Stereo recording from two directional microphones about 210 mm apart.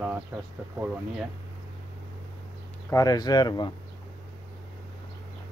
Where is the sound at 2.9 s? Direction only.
15° left (ahead or behind).